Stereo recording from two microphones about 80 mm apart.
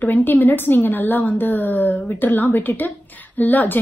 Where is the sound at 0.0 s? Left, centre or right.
Left.